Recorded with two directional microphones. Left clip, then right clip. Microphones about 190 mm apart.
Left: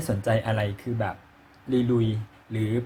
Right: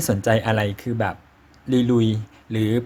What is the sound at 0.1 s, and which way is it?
Speech, 30° right (ahead or behind).